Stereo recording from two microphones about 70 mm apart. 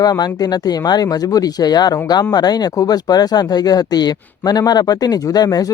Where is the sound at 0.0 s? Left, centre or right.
Left.